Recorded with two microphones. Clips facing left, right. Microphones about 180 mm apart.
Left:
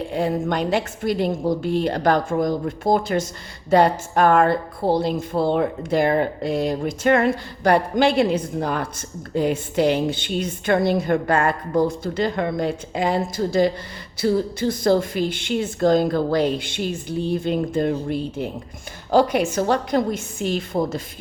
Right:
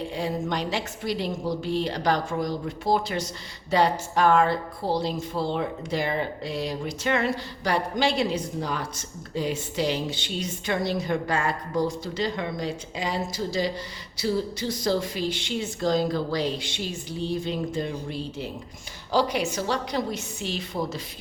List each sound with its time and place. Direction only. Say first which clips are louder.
0.1 s a woman's voice: left 9 dB; 55° left (ahead or behind)